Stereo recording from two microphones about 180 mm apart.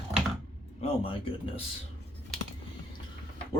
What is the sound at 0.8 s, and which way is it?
Speech, 30° left (ahead or behind).